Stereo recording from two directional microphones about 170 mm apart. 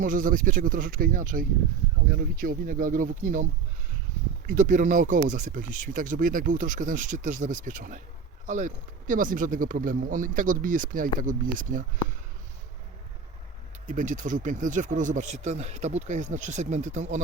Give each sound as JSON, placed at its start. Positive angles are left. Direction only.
{"t": 0.0, "sound": "speech", "side_deg": -50}
{"t": 13.8, "sound": "speech", "side_deg": -50}